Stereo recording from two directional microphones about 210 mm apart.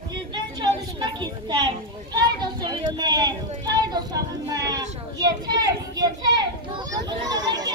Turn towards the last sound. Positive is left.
turn(degrees=-20)  # may be behind; listen again after turning